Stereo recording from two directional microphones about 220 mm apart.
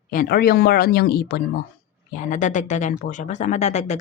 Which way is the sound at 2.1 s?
35° left (ahead or behind).